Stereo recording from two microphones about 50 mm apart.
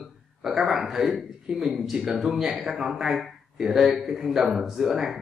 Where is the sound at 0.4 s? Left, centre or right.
Centre.